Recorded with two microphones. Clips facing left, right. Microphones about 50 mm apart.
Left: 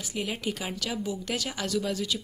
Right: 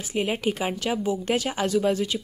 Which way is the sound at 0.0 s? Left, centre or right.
Right.